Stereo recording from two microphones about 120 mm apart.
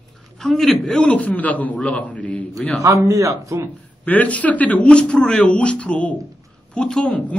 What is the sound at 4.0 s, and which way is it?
A man's voice, 10° left (ahead or behind).